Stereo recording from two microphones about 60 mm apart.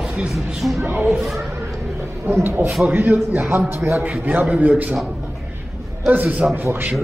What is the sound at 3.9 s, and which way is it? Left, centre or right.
A man's voice, right.